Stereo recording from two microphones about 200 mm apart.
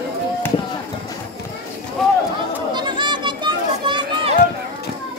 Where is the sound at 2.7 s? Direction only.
25° right (ahead or behind).